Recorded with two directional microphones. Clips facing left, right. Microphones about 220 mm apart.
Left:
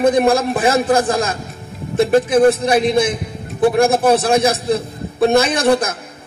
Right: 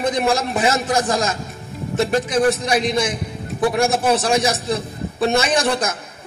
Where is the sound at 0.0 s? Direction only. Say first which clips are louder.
Left 6 dB; 55° left (ahead or behind).